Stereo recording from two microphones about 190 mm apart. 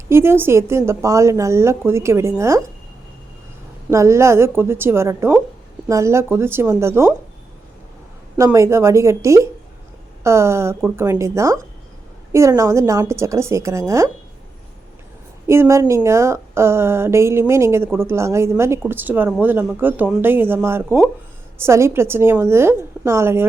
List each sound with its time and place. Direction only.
0.1 s a woman's voice: 10° right (ahead or behind)
3.8 s a woman's voice: 15° right (ahead or behind)
8.4 s a woman's voice: 15° right (ahead or behind)
15.4 s a woman's voice: 15° right (ahead or behind)